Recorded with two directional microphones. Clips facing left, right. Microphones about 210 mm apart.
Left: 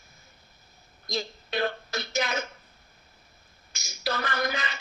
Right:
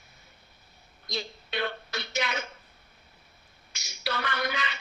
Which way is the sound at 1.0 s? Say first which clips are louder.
Left 3 dB; 45° left (ahead or behind).